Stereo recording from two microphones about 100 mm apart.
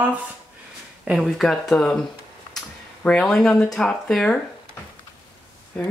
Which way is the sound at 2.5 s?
10° left (ahead or behind).